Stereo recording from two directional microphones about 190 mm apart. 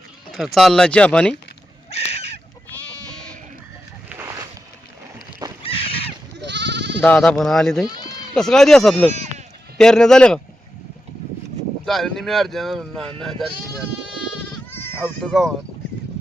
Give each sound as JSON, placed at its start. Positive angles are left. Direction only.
{"t": 0.3, "sound": "speech", "side_deg": 0}
{"t": 1.9, "sound": "crow", "side_deg": 35}
{"t": 2.7, "sound": "goat", "side_deg": 10}
{"t": 3.1, "sound": "sheep", "side_deg": 5}
{"t": 4.1, "sound": "a sound", "side_deg": -15}
{"t": 5.6, "sound": "crow", "side_deg": 30}
{"t": 6.3, "sound": "goat", "side_deg": -65}
{"t": 7.0, "sound": "speech", "side_deg": 5}
{"t": 11.9, "sound": "speech", "side_deg": 0}
{"t": 14.7, "sound": "bleat", "side_deg": 10}
{"t": 15.2, "sound": "speech", "side_deg": 0}